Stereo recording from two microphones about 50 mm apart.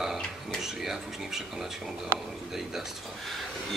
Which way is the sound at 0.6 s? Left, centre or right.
Centre.